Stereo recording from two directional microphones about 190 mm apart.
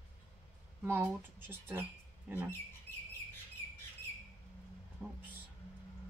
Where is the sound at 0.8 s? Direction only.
10° right (ahead or behind).